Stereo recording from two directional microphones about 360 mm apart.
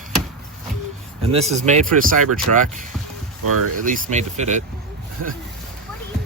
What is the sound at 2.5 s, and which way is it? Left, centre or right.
Speech, right.